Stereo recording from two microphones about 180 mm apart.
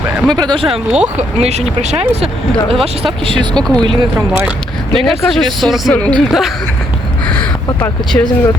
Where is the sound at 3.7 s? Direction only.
25° right (ahead or behind).